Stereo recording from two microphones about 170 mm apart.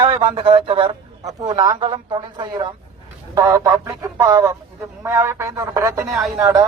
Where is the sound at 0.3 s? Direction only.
30° right (ahead or behind).